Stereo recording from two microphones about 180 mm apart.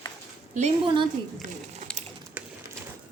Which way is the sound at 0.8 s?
25° right (ahead or behind).